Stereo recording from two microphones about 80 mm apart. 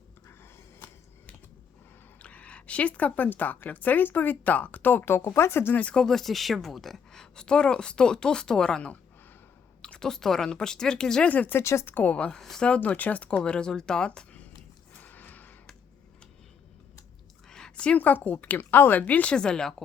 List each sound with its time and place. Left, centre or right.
2.2 s a woman's voice: centre
5.8 s speech: centre
11.3 s a woman's voice: left
11.9 s speech: centre
12.4 s speech: centre
12.6 s speech: centre
14.9 s a sound: left
17.5 s a woman's voice: centre